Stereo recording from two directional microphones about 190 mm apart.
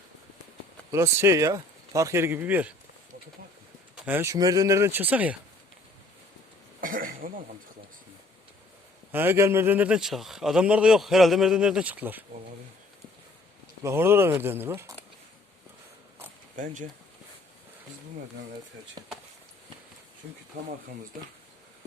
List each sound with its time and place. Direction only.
0.9 s speech: 15° right (ahead or behind)
3.9 s speech: 10° right (ahead or behind)
6.8 s throat clearing: 45° right (ahead or behind)
9.1 s a man's voice: 10° right (ahead or behind)
13.8 s speech: 10° right (ahead or behind)
16.6 s speech: 45° right (ahead or behind)
19.0 s speech: 25° right (ahead or behind)